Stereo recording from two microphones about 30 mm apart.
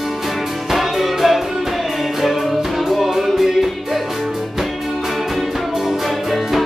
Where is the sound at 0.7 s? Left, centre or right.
Centre.